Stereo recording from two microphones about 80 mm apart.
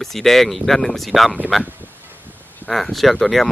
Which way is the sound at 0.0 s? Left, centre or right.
Centre.